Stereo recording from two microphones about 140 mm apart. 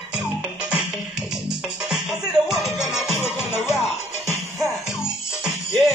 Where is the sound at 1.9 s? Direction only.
Centre (ahead or behind).